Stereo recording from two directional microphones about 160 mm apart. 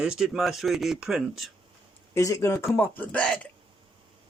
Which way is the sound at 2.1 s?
20° left (ahead or behind).